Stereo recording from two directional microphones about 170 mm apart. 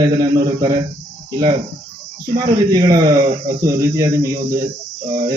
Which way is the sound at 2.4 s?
25° right (ahead or behind).